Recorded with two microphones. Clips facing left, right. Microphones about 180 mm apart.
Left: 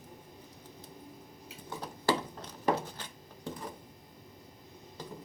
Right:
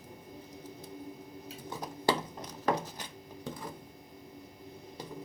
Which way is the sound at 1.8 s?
15° right (ahead or behind).